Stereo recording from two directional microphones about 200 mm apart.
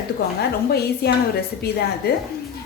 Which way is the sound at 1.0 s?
50° left (ahead or behind).